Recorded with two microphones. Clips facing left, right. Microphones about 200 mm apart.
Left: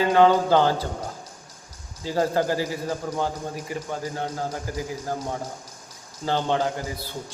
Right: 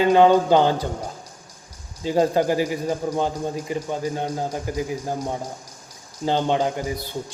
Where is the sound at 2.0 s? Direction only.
20° right (ahead or behind).